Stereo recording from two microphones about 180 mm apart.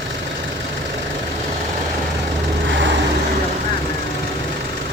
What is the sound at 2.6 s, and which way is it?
Vehicle, 90° right.